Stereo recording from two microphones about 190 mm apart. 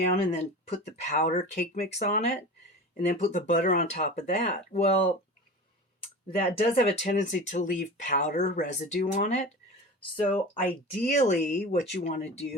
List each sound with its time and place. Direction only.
0.3 s speech: 40° left (ahead or behind)
6.3 s speech: 50° left (ahead or behind)